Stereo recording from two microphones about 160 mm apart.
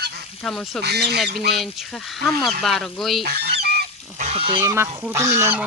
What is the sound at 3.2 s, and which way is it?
Goose, 90° right.